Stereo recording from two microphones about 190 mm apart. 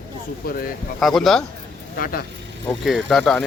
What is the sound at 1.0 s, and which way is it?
Speech, centre (ahead or behind).